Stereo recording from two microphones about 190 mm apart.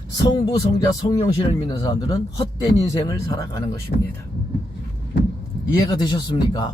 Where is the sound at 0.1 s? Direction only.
20° left (ahead or behind).